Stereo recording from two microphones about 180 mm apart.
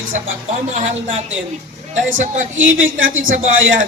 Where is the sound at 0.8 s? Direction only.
40° right (ahead or behind).